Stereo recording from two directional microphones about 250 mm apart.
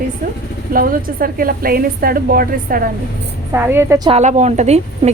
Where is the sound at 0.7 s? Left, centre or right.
Right.